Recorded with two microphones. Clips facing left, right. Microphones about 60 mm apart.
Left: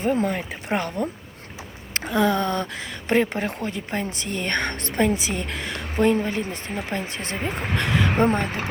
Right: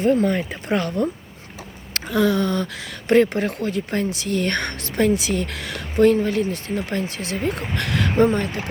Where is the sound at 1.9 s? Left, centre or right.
Left.